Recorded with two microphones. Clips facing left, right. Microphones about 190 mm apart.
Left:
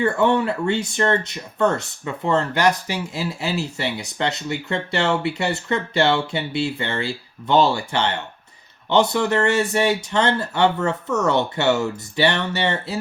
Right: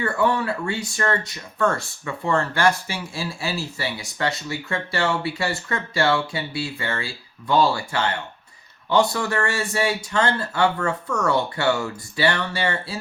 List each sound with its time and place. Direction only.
0.0 s speech: 25° left (ahead or behind)